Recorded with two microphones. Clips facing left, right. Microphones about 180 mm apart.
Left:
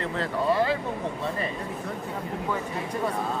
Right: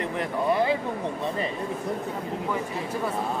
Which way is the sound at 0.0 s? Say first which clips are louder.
Even; 15° right (ahead or behind).